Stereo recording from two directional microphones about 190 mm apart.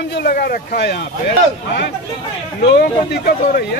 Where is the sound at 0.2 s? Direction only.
50° left (ahead or behind).